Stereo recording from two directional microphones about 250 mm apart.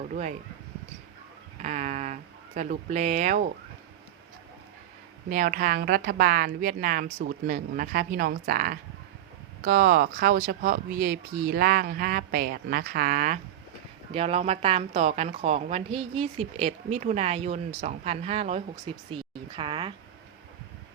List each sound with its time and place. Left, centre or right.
0.0 s speech: right
1.6 s speech: right
5.3 s speech: right